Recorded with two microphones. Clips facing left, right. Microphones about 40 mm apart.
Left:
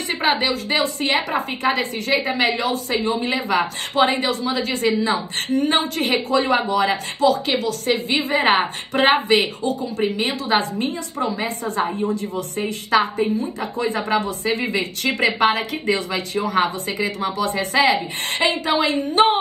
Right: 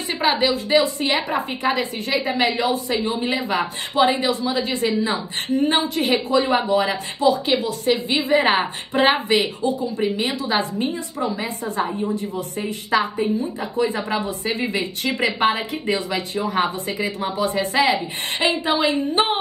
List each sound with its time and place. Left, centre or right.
0.1 s a woman's voice: left
4.3 s speech: left
4.9 s a woman's voice: left
8.5 s speech: left